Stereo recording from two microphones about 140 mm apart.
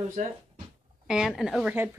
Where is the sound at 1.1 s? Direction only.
5° right (ahead or behind).